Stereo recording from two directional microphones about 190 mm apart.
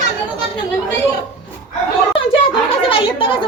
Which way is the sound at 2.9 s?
25° left (ahead or behind).